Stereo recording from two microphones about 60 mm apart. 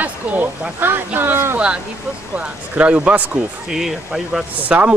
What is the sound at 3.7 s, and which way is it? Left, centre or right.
Speech, centre.